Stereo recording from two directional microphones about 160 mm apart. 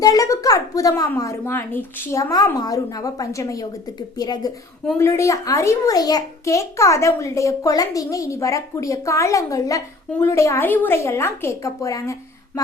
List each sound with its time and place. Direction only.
0.0 s a child's voice: 20° left (ahead or behind)